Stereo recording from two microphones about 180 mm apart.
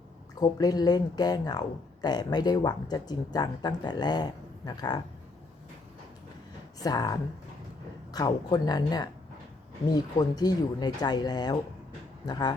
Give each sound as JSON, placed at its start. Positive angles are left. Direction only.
{"t": 0.3, "sound": "speech", "side_deg": 20}
{"t": 6.7, "sound": "speech", "side_deg": 20}